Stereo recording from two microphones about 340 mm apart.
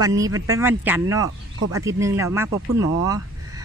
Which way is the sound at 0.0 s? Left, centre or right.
Centre.